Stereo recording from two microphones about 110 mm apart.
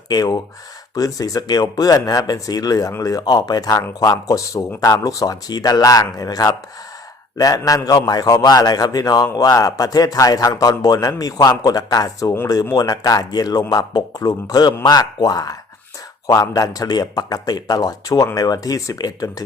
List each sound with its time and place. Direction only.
0.1 s a man's voice: 35° left (ahead or behind)